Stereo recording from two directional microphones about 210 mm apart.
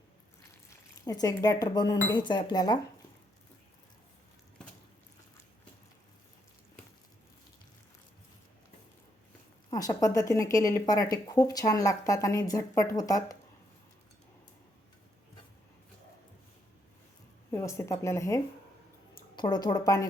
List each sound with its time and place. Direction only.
1.0 s speech: 15° left (ahead or behind)
9.6 s a woman's voice: 15° left (ahead or behind)
17.5 s a woman's voice: 15° left (ahead or behind)
19.4 s speech: 20° left (ahead or behind)